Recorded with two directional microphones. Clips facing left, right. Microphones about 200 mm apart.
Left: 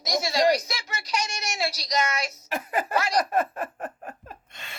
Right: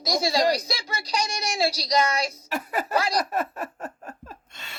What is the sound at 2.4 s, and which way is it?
Speech, 45° left (ahead or behind).